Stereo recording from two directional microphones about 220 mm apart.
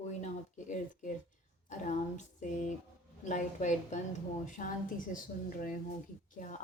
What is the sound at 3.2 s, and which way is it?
A woman's voice, 35° left (ahead or behind).